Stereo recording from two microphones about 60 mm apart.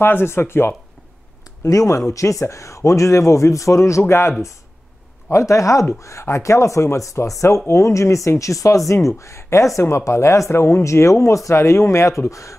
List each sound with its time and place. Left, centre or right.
0.0 s speech: left
1.6 s speech: left
4.1 s speech: left
5.3 s speech: left